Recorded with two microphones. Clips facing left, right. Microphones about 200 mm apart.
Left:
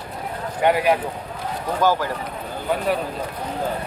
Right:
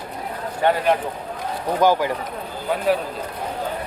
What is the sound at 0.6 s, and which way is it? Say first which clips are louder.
Speech: left 1 dB; 10° left (ahead or behind).